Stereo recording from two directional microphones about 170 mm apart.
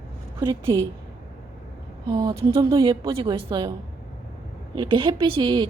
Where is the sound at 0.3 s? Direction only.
30° right (ahead or behind).